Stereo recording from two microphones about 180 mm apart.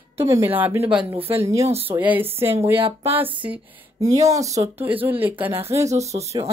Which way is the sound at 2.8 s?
35° right (ahead or behind).